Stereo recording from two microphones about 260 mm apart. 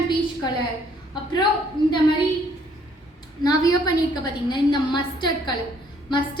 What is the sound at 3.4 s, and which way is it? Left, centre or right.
A woman's voice, centre.